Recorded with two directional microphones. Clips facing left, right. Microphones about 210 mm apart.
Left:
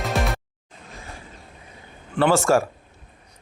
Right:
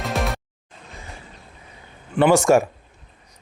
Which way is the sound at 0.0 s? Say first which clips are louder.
Even; centre (ahead or behind).